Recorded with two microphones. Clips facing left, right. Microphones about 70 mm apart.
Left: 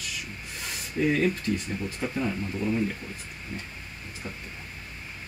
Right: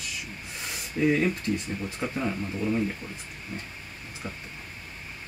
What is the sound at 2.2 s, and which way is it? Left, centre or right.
Speech, centre.